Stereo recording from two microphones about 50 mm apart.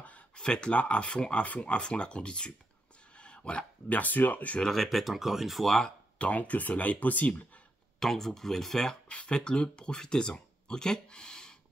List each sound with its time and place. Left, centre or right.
0.4 s speech: centre
3.2 s a sound: left
4.0 s speech: left
4.6 s speech: centre
4.8 s speech: centre
5.8 s speech: left
8.0 s speech: centre
9.1 s speech: centre